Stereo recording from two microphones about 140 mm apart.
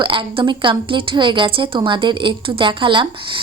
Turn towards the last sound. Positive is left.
turn(degrees=-35)  # may be behind; listen again after turning